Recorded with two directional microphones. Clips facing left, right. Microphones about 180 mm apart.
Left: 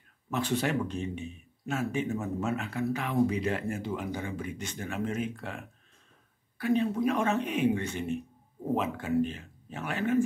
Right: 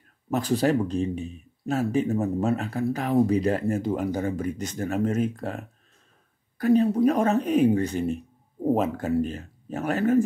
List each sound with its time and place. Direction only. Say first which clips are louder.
0.3 s speech: right 7 dB; 40° right (ahead or behind)